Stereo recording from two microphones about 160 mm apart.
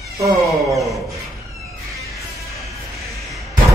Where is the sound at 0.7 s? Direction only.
Centre (ahead or behind).